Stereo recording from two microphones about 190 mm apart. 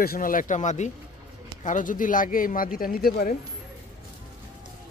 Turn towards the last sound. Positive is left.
turn(degrees=50)  # may be behind; listen again after turning